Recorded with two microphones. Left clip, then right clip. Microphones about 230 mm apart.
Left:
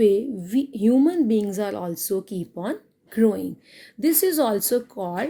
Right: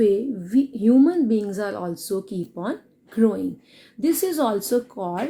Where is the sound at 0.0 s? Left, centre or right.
Left.